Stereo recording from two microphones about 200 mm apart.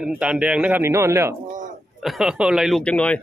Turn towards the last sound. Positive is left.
turn(degrees=5)  # may be behind; listen again after turning